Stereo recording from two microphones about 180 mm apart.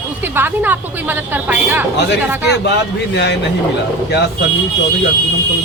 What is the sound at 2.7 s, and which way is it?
Speech, 70° left (ahead or behind).